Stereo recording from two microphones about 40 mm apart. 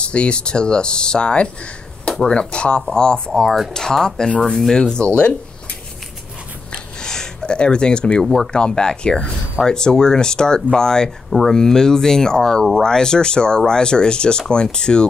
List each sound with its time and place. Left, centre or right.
0.0 s speech: left
5.0 s speech: left
7.0 s a sound: centre
8.5 s speech: left